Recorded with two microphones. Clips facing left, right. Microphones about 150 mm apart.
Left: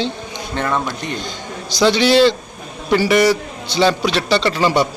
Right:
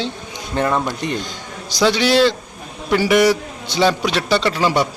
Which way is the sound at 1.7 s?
10° right (ahead or behind).